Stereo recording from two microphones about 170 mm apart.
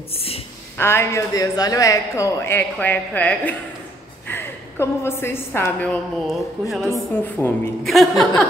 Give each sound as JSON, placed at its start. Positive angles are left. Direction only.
{"t": 0.1, "sound": "a sound", "side_deg": 35}
{"t": 0.7, "sound": "speech", "side_deg": 15}
{"t": 7.4, "sound": "speech", "side_deg": 15}
{"t": 7.8, "sound": "speech", "side_deg": 0}